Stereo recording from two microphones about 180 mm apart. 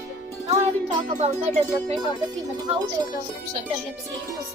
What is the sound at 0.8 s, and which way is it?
Music, 40° right (ahead or behind).